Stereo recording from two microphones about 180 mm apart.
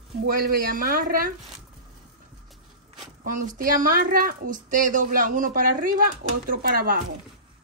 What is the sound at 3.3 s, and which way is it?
A woman's voice, 45° right (ahead or behind).